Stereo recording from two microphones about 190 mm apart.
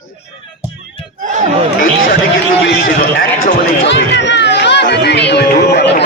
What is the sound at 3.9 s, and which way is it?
Speech, 70° left (ahead or behind).